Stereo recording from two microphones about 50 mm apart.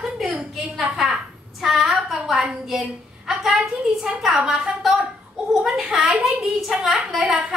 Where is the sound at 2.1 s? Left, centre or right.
Centre.